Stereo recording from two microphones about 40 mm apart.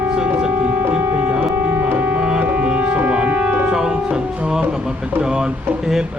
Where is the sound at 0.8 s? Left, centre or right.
Right.